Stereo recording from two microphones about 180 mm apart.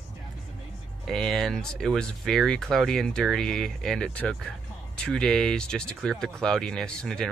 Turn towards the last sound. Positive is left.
turn(degrees=5)  # may be behind; listen again after turning